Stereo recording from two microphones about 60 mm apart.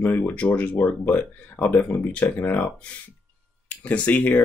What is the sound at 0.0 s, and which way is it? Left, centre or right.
Speech, left.